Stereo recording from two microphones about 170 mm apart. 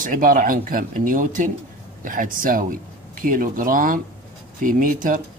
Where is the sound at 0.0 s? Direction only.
55° right (ahead or behind).